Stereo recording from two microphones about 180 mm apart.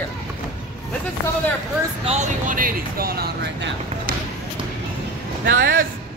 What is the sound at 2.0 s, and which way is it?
Speech, 45° right (ahead or behind).